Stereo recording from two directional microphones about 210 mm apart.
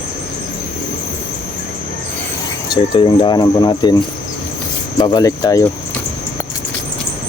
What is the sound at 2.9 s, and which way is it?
Speech, 25° left (ahead or behind).